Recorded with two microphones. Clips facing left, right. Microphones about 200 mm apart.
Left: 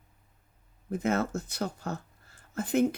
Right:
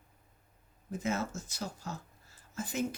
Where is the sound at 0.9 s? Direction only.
60° left (ahead or behind).